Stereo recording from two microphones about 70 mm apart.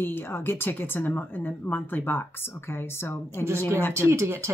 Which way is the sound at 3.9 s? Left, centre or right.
Right.